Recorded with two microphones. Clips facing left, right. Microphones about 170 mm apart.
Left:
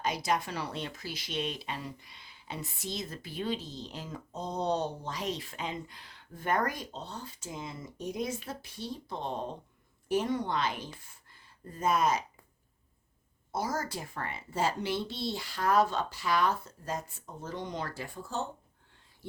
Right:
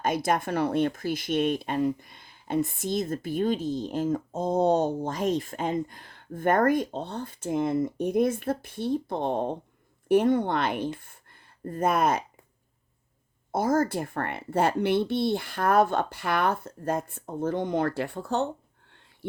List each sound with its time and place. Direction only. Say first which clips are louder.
0.0 s a woman's voice: right 5 dB; 50° right (ahead or behind)
13.5 s a woman's voice: right 10 dB; 55° right (ahead or behind)